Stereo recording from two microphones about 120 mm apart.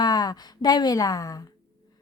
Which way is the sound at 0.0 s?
35° left (ahead or behind).